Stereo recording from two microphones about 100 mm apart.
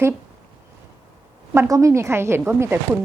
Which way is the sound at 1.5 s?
30° right (ahead or behind).